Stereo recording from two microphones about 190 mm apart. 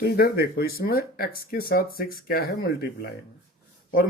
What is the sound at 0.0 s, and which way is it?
Speech, 55° left (ahead or behind).